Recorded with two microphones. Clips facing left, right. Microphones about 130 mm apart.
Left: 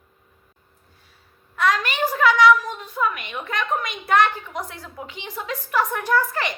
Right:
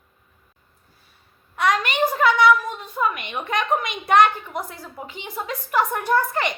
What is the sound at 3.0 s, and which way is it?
Speech, 25° right (ahead or behind).